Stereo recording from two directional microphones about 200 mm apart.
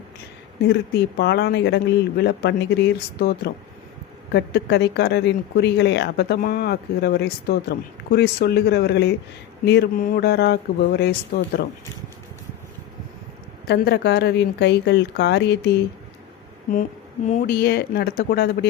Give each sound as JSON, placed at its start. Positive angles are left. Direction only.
{"t": 0.7, "sound": "speech", "side_deg": 55}
{"t": 13.7, "sound": "speech", "side_deg": 55}
{"t": 17.2, "sound": "speech", "side_deg": 40}